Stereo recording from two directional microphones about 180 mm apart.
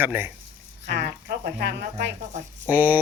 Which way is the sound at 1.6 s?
70° right (ahead or behind).